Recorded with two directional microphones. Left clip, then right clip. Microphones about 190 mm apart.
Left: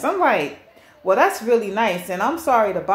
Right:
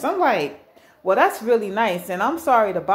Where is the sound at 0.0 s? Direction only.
15° right (ahead or behind).